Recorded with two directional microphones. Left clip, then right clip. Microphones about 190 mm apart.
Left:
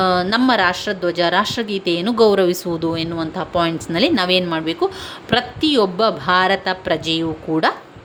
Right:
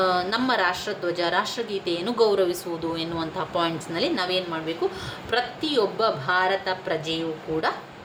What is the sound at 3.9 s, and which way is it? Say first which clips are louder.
Speech: left 11 dB; 45° left (ahead or behind).